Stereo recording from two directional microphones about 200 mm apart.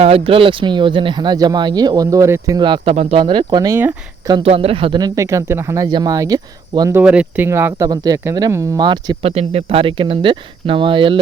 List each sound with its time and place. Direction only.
0.0 s speech: 30° right (ahead or behind)
2.9 s speech: 35° right (ahead or behind)
3.2 s speech: 25° right (ahead or behind)
4.4 s speech: 30° right (ahead or behind)
7.0 s speech: 5° right (ahead or behind); by 11.2 s 25° right (ahead or behind)